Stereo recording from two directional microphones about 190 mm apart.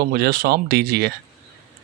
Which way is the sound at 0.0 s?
50° right (ahead or behind).